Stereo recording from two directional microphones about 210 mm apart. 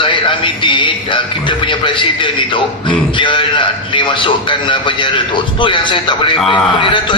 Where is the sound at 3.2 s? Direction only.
25° left (ahead or behind).